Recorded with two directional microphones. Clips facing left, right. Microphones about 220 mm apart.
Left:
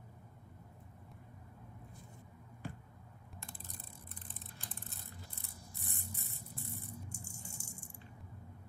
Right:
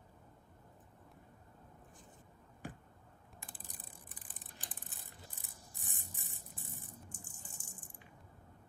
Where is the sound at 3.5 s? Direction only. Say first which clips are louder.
Left 3 dB; 15° right (ahead or behind).